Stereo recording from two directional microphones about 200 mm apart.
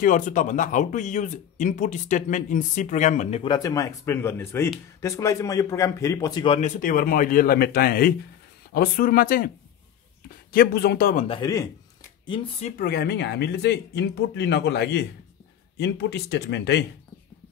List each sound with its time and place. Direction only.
0.0 s speech: 40° left (ahead or behind)
3.4 s speech: 20° left (ahead or behind); by 9.5 s 45° left (ahead or behind)
10.5 s speech: 50° left (ahead or behind)
11.2 s speech: 20° left (ahead or behind)
12.3 s speech: 30° left (ahead or behind)
12.7 s speech: 50° left (ahead or behind)